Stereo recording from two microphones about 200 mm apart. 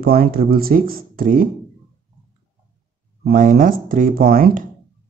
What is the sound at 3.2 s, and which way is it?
Speech, 45° right (ahead or behind).